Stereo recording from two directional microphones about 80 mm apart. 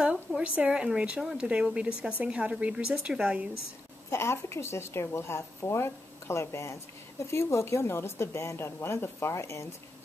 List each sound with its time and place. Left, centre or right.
0.4 s speech: centre
1.2 s speech: centre
4.1 s speech: left